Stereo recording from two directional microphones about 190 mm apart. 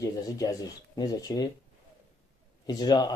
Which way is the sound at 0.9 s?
20° left (ahead or behind).